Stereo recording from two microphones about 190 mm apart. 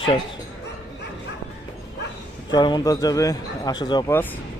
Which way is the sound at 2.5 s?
20° left (ahead or behind).